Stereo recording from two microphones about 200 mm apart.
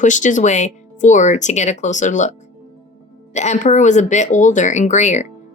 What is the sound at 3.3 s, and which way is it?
A woman's voice, 35° left (ahead or behind).